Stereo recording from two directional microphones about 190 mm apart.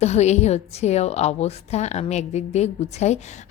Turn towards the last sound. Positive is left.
turn(degrees=35)  # may be behind; listen again after turning